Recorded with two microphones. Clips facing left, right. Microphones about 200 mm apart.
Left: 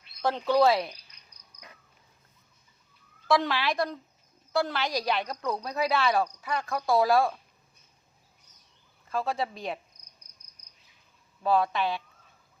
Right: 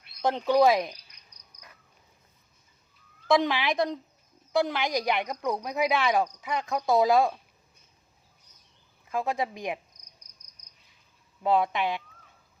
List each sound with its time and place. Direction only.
0.2 s speech: 20° right (ahead or behind)
3.2 s speech: 20° right (ahead or behind)
9.0 s speech: 15° right (ahead or behind)
11.4 s speech: 20° right (ahead or behind)